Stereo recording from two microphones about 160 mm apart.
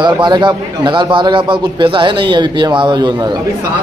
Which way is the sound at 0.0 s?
30° right (ahead or behind).